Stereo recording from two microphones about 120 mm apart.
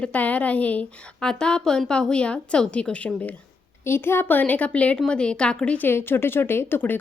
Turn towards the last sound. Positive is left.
turn(degrees=15)  # may be behind; listen again after turning